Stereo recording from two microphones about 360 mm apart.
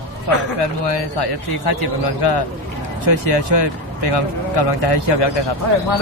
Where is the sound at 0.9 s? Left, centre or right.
Left.